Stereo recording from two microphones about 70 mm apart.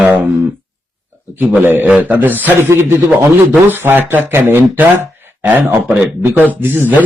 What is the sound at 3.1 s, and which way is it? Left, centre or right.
Speech, right.